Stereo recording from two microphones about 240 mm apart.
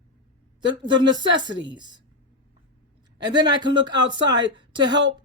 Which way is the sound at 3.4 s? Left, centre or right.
Centre.